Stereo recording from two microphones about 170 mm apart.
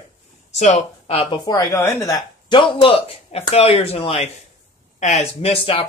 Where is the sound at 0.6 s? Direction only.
40° left (ahead or behind); by 2.2 s 15° left (ahead or behind).